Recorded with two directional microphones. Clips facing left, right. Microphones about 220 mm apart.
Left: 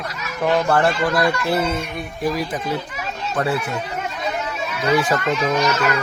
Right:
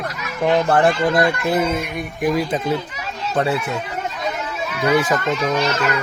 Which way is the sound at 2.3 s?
25° right (ahead or behind).